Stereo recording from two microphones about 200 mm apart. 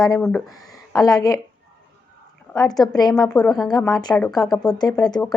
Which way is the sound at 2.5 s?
20° left (ahead or behind).